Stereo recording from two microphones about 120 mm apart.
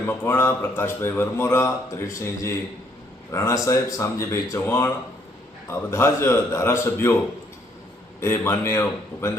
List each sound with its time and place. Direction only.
0.2 s a man's voice: 20° left (ahead or behind)
8.2 s a man's voice: 20° left (ahead or behind)